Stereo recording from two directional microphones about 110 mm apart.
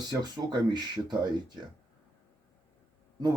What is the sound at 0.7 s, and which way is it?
Speech, 40° right (ahead or behind).